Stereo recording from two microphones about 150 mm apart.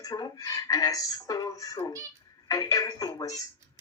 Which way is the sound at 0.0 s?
25° left (ahead or behind).